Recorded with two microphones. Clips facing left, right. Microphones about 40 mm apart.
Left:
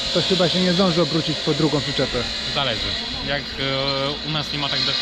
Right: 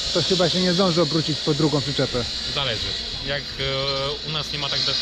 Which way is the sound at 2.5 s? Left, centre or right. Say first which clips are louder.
Left 3 dB; left.